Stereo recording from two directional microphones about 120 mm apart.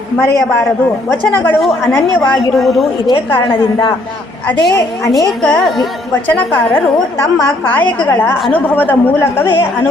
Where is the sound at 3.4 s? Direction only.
45° left (ahead or behind).